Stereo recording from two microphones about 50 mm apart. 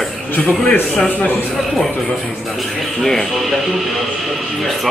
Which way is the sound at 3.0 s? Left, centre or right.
Centre.